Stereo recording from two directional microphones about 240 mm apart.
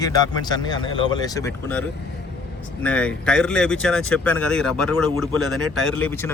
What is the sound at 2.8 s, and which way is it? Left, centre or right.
Speech, centre.